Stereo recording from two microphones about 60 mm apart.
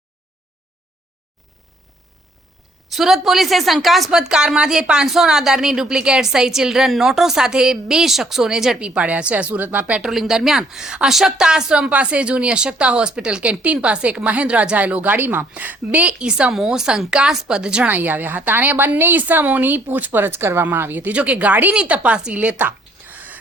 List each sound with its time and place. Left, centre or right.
2.9 s speech: centre
9.0 s a woman's voice: right
10.0 s a woman's voice: centre
17.8 s a woman's voice: right
21.1 s speech: right